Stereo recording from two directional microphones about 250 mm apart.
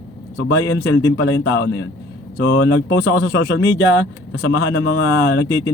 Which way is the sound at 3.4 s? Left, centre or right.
Left.